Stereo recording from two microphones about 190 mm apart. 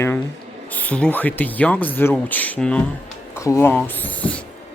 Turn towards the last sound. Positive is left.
turn(degrees=5)  # may be behind; listen again after turning